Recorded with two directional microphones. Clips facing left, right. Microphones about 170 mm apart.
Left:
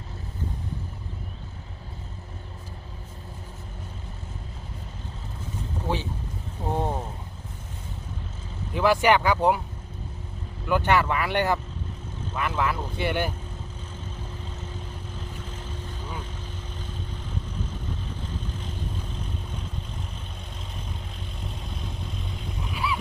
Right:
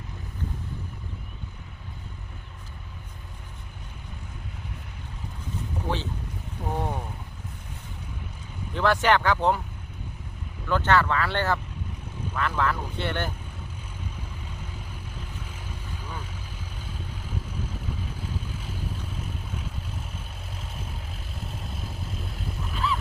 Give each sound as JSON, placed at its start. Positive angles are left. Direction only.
{"t": 5.9, "sound": "speech", "side_deg": 15}
{"t": 6.7, "sound": "vehicle", "side_deg": 25}
{"t": 8.7, "sound": "speech", "side_deg": 10}
{"t": 10.7, "sound": "speech", "side_deg": 15}
{"t": 15.4, "sound": "vehicle", "side_deg": -10}
{"t": 21.4, "sound": "vehicle", "side_deg": -5}
{"t": 22.7, "sound": "a sound", "side_deg": 10}